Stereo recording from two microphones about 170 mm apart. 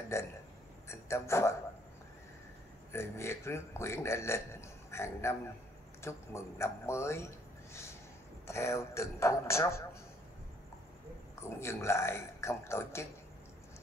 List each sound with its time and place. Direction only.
0.1 s a man's voice: 15° left (ahead or behind)
2.9 s a man's voice: 15° left (ahead or behind)
11.4 s a man's voice: 15° left (ahead or behind)